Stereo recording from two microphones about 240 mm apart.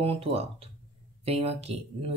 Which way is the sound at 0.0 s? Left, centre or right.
Right.